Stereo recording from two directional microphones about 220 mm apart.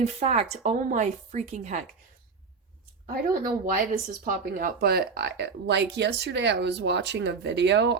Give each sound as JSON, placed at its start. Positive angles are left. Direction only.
{"t": 0.0, "sound": "a woman's voice", "side_deg": -30}
{"t": 3.1, "sound": "speech", "side_deg": -40}